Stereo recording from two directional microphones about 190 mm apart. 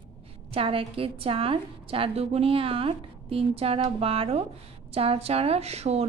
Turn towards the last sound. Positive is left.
turn(degrees=-35)  # may be behind; listen again after turning